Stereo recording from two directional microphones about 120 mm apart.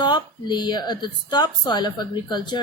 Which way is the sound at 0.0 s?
40° left (ahead or behind).